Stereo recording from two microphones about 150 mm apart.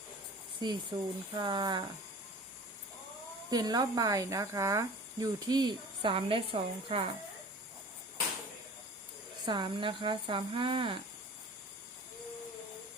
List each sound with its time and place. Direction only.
0.6 s speech: 30° right (ahead or behind)
3.5 s speech: 25° right (ahead or behind)
9.5 s speech: 35° right (ahead or behind)